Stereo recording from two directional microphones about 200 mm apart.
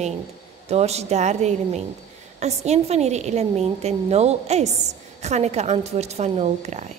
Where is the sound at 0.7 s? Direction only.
30° right (ahead or behind).